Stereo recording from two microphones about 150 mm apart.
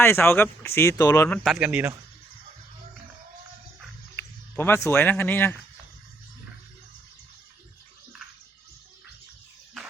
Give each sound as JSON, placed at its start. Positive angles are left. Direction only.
{"t": 0.0, "sound": "speech", "side_deg": 15}
{"t": 1.5, "sound": "speech", "side_deg": -5}
{"t": 4.2, "sound": "speech", "side_deg": 15}